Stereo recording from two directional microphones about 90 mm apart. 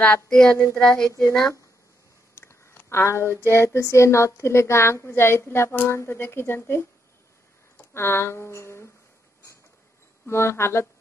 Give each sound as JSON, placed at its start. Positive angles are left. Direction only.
{"t": 0.0, "sound": "child singing", "side_deg": 15}
{"t": 2.3, "sound": "a sound", "side_deg": 30}
{"t": 3.5, "sound": "a woman's voice", "side_deg": 30}
{"t": 7.9, "sound": "a woman's voice", "side_deg": 25}
{"t": 10.2, "sound": "a woman's voice", "side_deg": 30}